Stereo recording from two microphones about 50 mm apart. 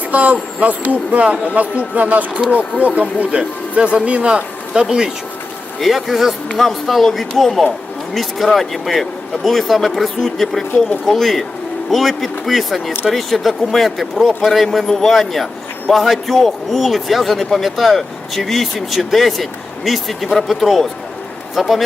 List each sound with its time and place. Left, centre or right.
0.1 s speech: right; by 5.1 s centre
5.8 s a man's voice: centre